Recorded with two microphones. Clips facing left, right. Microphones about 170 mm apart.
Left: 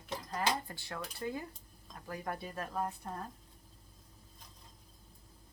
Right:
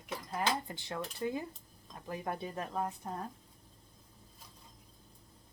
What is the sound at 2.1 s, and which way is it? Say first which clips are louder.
Speech: right 2 dB; 20° right (ahead or behind).